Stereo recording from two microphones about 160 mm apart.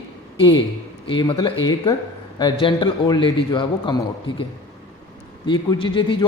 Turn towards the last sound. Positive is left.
turn(degrees=30)  # may be behind; listen again after turning